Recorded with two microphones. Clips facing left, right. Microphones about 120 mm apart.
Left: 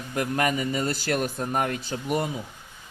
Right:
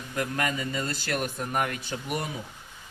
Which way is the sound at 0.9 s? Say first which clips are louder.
Left 4 dB; 35° left (ahead or behind).